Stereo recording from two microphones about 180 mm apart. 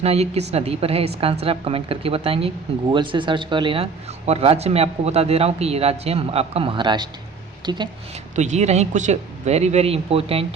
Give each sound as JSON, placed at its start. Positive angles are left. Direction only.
{"t": 0.0, "sound": "a man's voice", "side_deg": -35}
{"t": 8.4, "sound": "a man's voice", "side_deg": -40}